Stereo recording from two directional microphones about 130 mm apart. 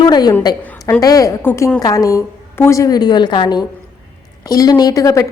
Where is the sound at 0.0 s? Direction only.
30° left (ahead or behind).